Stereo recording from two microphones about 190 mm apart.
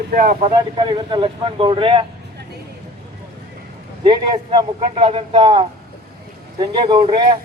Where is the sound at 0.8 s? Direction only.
25° right (ahead or behind).